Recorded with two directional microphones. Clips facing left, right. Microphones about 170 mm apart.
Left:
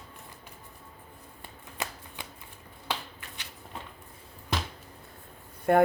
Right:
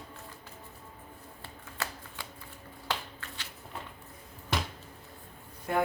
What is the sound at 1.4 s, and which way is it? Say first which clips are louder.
Shuffling cards: left 1 dB; 15° left (ahead or behind).